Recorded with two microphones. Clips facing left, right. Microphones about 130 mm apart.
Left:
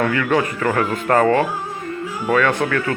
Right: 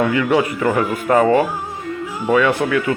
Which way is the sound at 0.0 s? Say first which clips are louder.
Right 2 dB; 15° right (ahead or behind).